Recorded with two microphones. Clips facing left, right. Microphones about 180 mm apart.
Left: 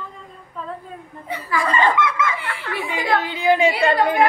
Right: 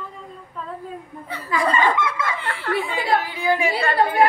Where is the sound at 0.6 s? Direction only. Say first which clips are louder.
Left 2 dB; centre (ahead or behind).